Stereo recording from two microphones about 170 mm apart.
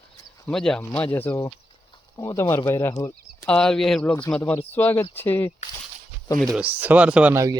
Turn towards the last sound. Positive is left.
turn(degrees=-15)  # may be behind; listen again after turning